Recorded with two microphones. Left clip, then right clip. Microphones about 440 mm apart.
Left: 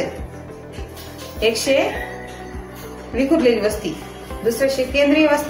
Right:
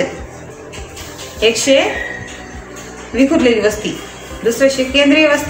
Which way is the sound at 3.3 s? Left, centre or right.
Left.